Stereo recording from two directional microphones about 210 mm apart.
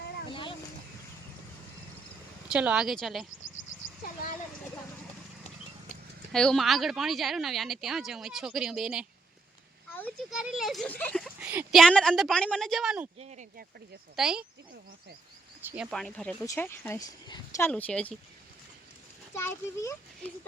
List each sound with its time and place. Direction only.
0.3 s boat: 25° left (ahead or behind)
2.5 s speech: 5° right (ahead or behind)
6.3 s speech: 5° left (ahead or behind)
9.9 s a sound: 10° left (ahead or behind)
10.3 s speech: centre (ahead or behind)
11.3 s a woman's voice: 5° right (ahead or behind)
13.1 s speech: 35° right (ahead or behind)
14.2 s speech: centre (ahead or behind)
15.6 s speech: 5° right (ahead or behind); by 17.7 s 15° left (ahead or behind)
17.7 s speech: 5° left (ahead or behind)
19.3 s speech: 10° left (ahead or behind)